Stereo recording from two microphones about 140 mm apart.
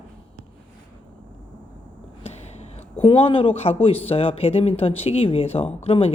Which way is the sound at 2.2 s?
50° left (ahead or behind).